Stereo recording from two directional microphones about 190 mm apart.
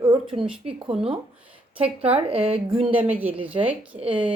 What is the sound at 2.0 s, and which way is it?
A woman's voice, 30° right (ahead or behind).